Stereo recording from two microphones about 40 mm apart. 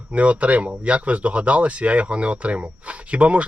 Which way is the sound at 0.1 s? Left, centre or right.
Right.